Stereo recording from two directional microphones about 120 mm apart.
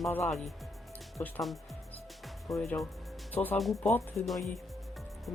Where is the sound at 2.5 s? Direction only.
5° left (ahead or behind).